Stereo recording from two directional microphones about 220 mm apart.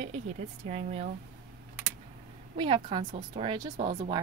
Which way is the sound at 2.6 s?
25° right (ahead or behind).